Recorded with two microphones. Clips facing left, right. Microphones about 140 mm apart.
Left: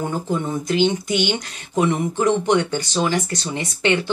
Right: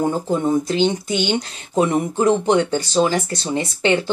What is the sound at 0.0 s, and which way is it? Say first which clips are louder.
Speech: right 4 dB; 30° right (ahead or behind).